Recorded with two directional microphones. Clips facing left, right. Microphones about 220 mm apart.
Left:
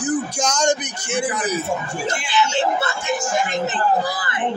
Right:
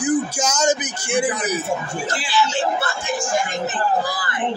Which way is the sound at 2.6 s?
20° left (ahead or behind).